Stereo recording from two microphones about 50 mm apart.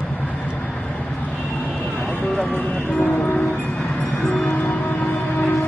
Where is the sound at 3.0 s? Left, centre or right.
Left.